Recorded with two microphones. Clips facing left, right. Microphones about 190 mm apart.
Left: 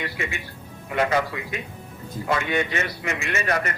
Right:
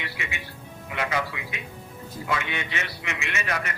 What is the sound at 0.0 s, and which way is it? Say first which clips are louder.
A man's voice: left 5 dB; 45° left (ahead or behind).